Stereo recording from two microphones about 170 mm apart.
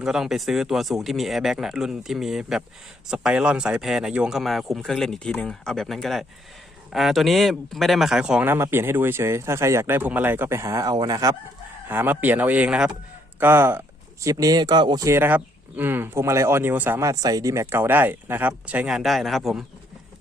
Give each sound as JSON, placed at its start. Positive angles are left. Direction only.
{"t": 0.0, "sound": "speech", "side_deg": 0}